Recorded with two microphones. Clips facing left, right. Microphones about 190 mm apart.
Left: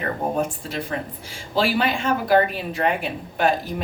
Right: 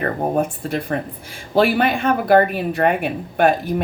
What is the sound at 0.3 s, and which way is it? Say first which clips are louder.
Speech: right 4 dB; 55° right (ahead or behind).